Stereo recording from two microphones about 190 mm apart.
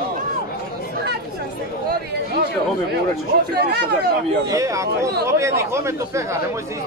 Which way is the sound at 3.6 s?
60° right (ahead or behind).